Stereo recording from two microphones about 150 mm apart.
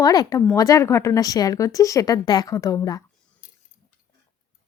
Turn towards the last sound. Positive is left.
turn(degrees=60)  # may be behind; listen again after turning